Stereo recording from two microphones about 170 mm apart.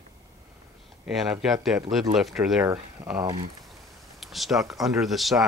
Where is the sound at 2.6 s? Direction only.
20° right (ahead or behind).